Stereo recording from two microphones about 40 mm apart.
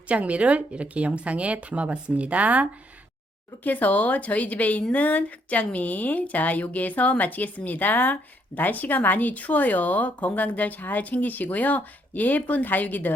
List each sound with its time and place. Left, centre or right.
0.1 s a woman's voice: right
3.6 s a woman's voice: left